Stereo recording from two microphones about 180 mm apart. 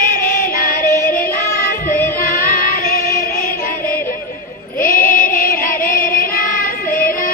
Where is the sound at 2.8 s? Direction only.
50° left (ahead or behind).